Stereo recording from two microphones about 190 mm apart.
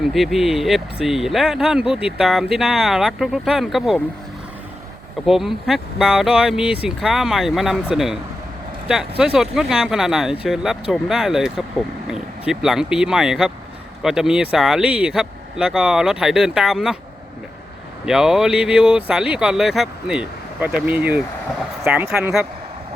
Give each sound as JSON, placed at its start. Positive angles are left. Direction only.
{"t": 0.0, "sound": "speech", "side_deg": 0}
{"t": 5.2, "sound": "speech", "side_deg": 0}
{"t": 18.0, "sound": "speech", "side_deg": 0}